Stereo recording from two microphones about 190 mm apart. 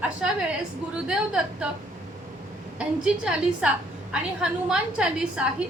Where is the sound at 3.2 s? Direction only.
5° right (ahead or behind).